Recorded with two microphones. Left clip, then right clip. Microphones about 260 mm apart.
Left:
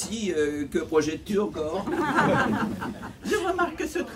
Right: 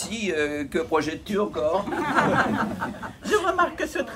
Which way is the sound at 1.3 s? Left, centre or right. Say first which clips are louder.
Right 7 dB; right.